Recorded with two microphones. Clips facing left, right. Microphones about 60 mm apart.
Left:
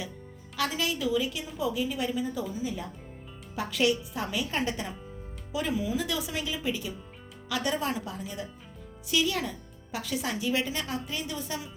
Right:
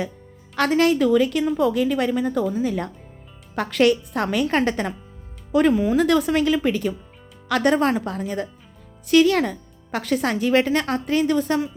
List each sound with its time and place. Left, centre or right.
0.5 s speech: right